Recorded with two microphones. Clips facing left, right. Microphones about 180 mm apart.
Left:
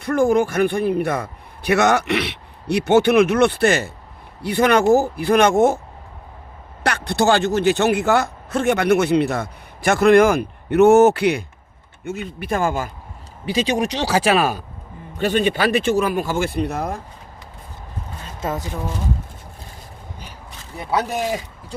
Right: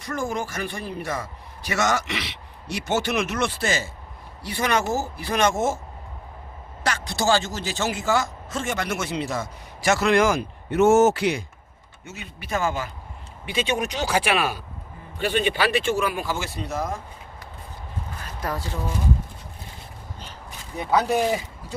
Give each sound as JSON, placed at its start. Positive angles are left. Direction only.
{"t": 0.0, "sound": "a man's voice", "side_deg": 60}
{"t": 6.8, "sound": "a man's voice", "side_deg": 60}
{"t": 13.4, "sound": "speech", "side_deg": 35}
{"t": 18.2, "sound": "a sound", "side_deg": 25}